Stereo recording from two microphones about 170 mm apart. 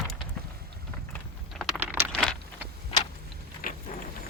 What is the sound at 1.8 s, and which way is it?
Keys jangling, 15° right (ahead or behind).